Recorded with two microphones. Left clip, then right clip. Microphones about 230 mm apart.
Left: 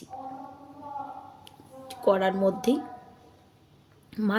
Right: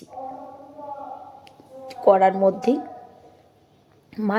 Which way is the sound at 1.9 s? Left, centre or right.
Centre.